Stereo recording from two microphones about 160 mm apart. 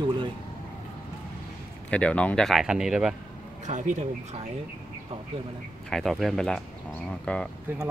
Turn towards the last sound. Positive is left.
turn(degrees=-10)  # may be behind; listen again after turning